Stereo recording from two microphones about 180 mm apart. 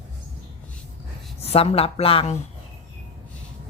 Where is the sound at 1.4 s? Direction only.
35° left (ahead or behind).